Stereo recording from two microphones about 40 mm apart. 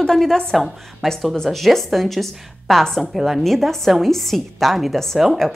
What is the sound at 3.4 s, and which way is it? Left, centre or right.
A woman's voice, centre.